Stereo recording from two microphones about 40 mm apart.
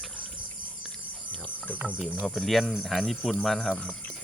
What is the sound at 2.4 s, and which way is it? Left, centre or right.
Cricket, centre.